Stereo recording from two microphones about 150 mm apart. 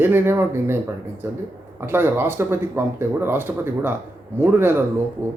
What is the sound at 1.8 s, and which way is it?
Speech, 15° right (ahead or behind).